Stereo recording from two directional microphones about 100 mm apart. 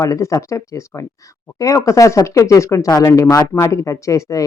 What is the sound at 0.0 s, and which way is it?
Speech, 35° left (ahead or behind).